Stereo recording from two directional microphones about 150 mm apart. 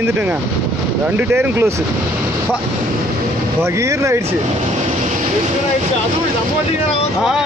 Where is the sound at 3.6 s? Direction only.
20° right (ahead or behind).